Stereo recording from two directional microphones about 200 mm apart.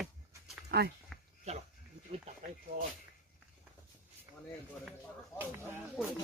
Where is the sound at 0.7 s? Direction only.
50° right (ahead or behind).